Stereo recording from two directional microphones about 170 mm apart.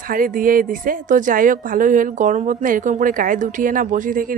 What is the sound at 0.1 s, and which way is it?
A woman's voice, 55° right (ahead or behind).